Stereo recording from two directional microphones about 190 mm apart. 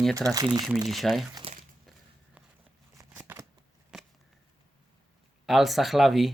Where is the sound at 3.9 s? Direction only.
Centre (ahead or behind).